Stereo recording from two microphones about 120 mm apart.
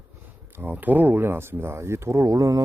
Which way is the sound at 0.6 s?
15° right (ahead or behind).